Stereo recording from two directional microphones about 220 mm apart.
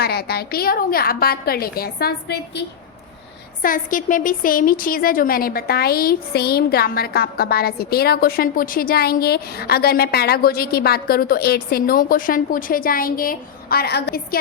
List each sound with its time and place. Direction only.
0.0 s a woman's voice: 45° left (ahead or behind)
3.6 s a woman's voice: 40° left (ahead or behind)